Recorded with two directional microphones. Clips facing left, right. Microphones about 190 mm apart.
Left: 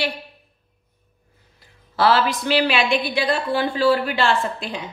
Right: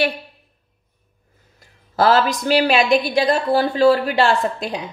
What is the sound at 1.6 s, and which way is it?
A woman's voice, 45° right (ahead or behind).